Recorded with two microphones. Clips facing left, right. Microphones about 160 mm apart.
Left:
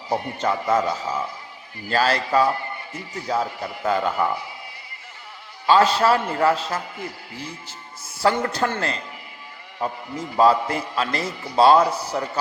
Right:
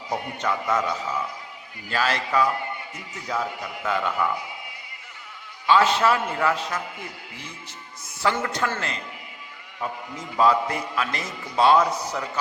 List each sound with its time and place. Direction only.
0.1 s a man's voice: 30° left (ahead or behind)
5.6 s a man's voice: 35° left (ahead or behind)
9.8 s a man's voice: 35° left (ahead or behind)